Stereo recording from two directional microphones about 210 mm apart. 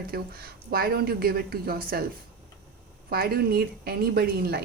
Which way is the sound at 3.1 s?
45° right (ahead or behind).